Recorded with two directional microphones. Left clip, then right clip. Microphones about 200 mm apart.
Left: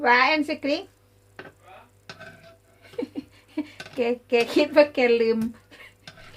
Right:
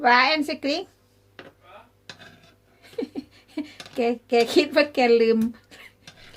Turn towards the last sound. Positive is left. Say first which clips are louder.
# right 3 dB
turn(degrees=-55)  # may be behind; listen again after turning